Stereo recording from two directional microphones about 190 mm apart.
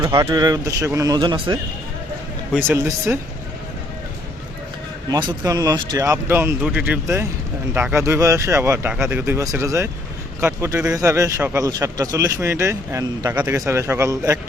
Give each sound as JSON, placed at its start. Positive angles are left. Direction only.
{"t": 0.0, "sound": "a man's voice", "side_deg": -20}
{"t": 2.6, "sound": "speech", "side_deg": -15}
{"t": 5.4, "sound": "speech", "side_deg": -20}